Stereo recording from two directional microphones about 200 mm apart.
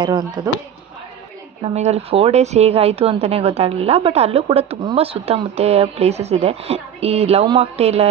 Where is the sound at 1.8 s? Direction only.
30° right (ahead or behind).